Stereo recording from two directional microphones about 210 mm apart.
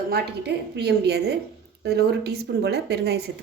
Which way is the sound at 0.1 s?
50° right (ahead or behind).